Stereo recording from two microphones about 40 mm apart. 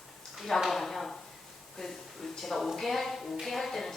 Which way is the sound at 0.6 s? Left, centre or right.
Centre.